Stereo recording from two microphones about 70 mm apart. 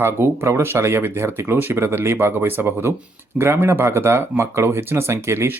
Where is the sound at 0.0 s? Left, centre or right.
Right.